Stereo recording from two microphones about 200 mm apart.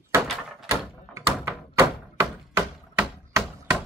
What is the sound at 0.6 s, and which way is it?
Door, 15° right (ahead or behind).